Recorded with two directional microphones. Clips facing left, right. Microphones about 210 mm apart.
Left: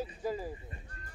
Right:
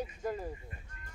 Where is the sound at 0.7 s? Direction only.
30° left (ahead or behind).